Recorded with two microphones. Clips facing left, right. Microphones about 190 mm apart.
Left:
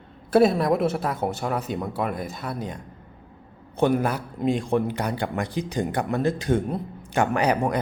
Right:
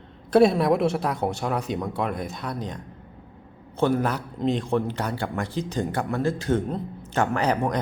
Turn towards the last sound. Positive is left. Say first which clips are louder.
# left 1 dB
turn(degrees=10)  # may be behind; listen again after turning